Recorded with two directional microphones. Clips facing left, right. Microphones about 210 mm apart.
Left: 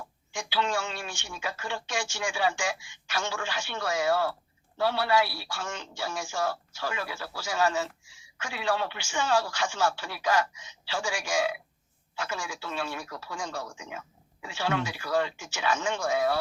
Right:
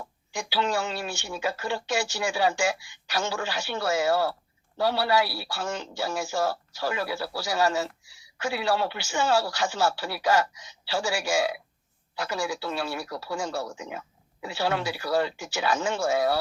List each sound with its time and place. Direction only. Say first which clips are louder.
0.3 s speech: right 3 dB; 40° right (ahead or behind)